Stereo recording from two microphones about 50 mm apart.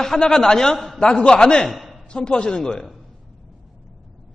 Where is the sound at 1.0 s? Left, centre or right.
Centre.